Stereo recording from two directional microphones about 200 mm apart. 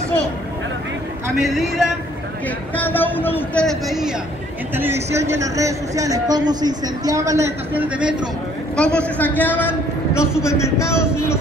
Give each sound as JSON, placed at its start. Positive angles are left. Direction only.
{"t": 1.3, "sound": "speech", "side_deg": 0}
{"t": 4.7, "sound": "speech", "side_deg": -10}
{"t": 8.7, "sound": "a woman's voice", "side_deg": 5}